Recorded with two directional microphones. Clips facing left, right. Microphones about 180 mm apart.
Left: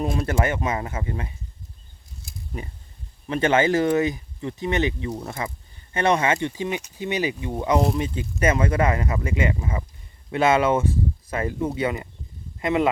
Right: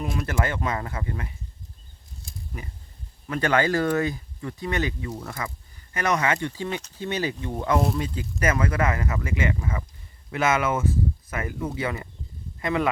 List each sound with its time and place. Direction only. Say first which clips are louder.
0.0 s speech: left 4 dB; 30° left (ahead or behind)
3.2 s speech: left 3 dB; 25° left (ahead or behind)